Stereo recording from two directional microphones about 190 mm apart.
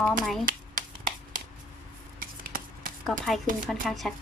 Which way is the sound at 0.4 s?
45° right (ahead or behind).